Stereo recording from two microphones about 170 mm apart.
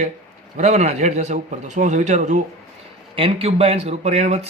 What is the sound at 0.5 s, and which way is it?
A man's voice, 40° right (ahead or behind).